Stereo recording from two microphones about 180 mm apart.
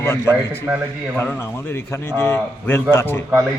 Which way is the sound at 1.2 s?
10° left (ahead or behind).